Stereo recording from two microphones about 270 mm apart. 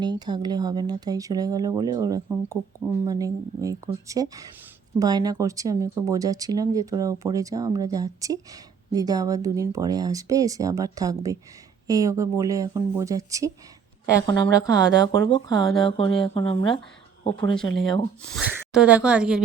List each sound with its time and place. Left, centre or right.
0.0 s speech: centre
14.2 s speech: centre
15.6 s speech: centre
15.9 s speech: centre
17.6 s speech: centre